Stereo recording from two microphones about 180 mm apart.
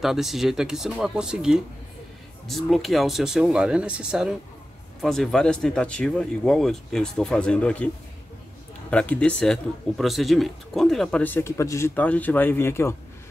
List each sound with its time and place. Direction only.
0.0 s speech: centre (ahead or behind)
8.9 s speech: 5° left (ahead or behind)